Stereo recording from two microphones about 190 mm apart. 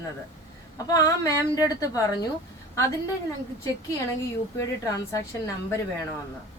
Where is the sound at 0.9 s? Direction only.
15° left (ahead or behind).